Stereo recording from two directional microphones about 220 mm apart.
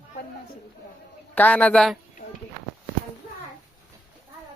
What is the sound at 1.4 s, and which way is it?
Speech, 5° left (ahead or behind).